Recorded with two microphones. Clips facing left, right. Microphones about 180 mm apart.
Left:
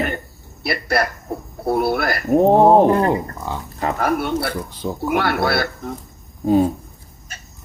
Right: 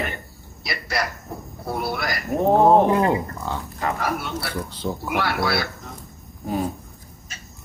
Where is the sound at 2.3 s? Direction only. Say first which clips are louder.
Left 5 dB; 30° left (ahead or behind).